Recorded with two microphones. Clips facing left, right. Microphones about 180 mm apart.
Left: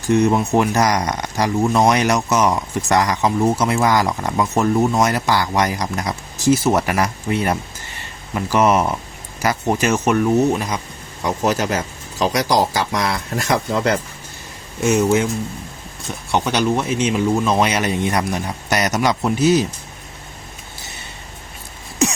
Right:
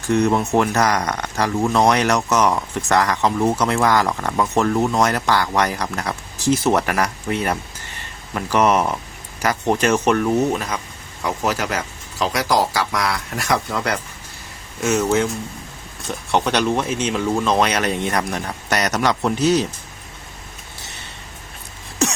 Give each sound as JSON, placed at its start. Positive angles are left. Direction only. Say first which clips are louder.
{"t": 0.1, "sound": "speech", "louder": "left 2 dB", "side_deg": 10}
{"t": 11.2, "sound": "speech", "louder": "left 3 dB", "side_deg": 20}
{"t": 16.3, "sound": "speech", "louder": "even", "side_deg": 5}